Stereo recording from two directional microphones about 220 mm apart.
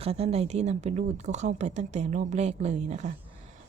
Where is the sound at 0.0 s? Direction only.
25° right (ahead or behind).